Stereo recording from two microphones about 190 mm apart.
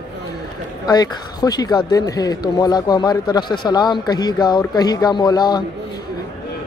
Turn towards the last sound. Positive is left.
turn(degrees=20)  # may be behind; listen again after turning